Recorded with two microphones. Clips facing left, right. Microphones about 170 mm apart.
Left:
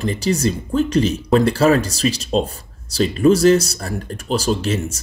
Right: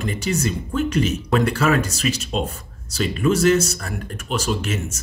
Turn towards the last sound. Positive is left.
turn(degrees=35)  # may be behind; listen again after turning